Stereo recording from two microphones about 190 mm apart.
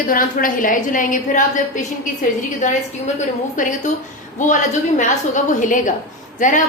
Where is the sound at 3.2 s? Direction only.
40° left (ahead or behind).